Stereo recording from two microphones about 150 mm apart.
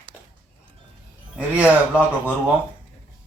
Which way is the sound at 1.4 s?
10° right (ahead or behind).